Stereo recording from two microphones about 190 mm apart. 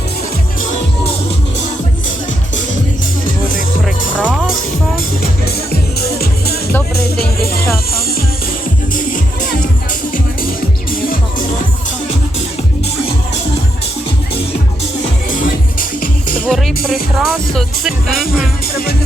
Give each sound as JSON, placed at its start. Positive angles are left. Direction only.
{"t": 4.2, "sound": "music", "side_deg": -5}
{"t": 6.0, "sound": "music", "side_deg": 55}
{"t": 9.0, "sound": "music", "side_deg": 45}
{"t": 15.3, "sound": "music", "side_deg": 45}
{"t": 16.5, "sound": "music", "side_deg": 0}